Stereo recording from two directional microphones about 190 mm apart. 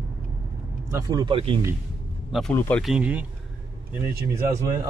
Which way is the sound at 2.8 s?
5° right (ahead or behind).